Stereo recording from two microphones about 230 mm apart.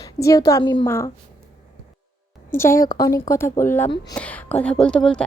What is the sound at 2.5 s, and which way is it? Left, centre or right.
A woman's voice, centre.